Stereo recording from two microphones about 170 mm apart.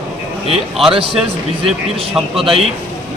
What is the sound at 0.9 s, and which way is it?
Speech, 30° right (ahead or behind).